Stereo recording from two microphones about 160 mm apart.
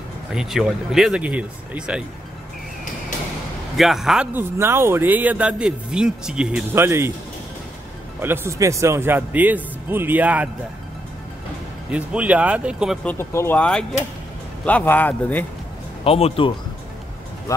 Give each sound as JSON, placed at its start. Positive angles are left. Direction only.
{"t": 0.3, "sound": "speech", "side_deg": 0}
{"t": 3.7, "sound": "speech", "side_deg": 0}
{"t": 6.7, "sound": "speech", "side_deg": -15}
{"t": 8.2, "sound": "speech", "side_deg": -15}
{"t": 11.9, "sound": "speech", "side_deg": -10}
{"t": 13.0, "sound": "speech", "side_deg": 15}
{"t": 16.0, "sound": "speech", "side_deg": 35}